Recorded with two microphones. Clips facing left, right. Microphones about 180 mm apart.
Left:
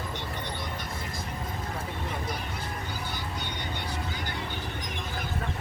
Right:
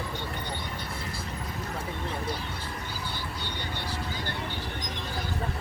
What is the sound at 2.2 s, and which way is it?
Vehicle, 30° right (ahead or behind).